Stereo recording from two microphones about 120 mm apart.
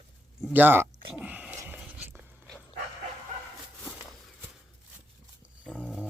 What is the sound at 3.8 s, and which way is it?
Walk, 10° left (ahead or behind).